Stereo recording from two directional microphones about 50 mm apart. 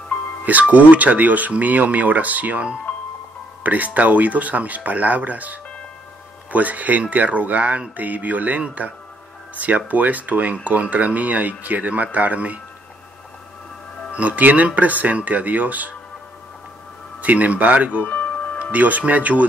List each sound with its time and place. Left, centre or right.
0.5 s speech: right
14.1 s speech: right
17.2 s speech: right
18.0 s music: left
18.7 s speech: right